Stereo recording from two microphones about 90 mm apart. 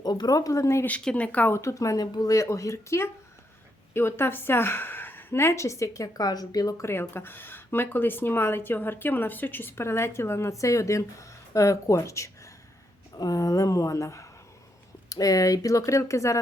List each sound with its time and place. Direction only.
0.0 s speech: 50° left (ahead or behind); by 0.9 s 30° left (ahead or behind)
0.9 s speech: 15° left (ahead or behind)
1.5 s speech: 35° left (ahead or behind)
6.8 s speech: 25° left (ahead or behind)